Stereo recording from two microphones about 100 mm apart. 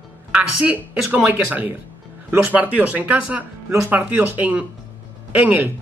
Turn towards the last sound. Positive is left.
turn(degrees=-15)  # may be behind; listen again after turning